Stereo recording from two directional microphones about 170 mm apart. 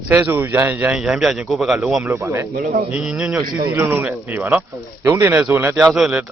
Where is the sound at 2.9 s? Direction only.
5° right (ahead or behind).